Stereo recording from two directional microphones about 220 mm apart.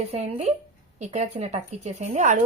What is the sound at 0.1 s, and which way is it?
Speech, 30° right (ahead or behind).